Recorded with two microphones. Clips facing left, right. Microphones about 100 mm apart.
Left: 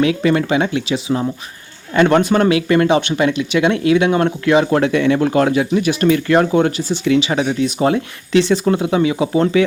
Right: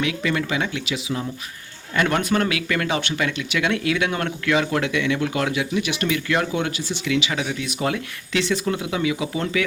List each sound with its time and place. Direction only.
0.0 s speech: 35° left (ahead or behind)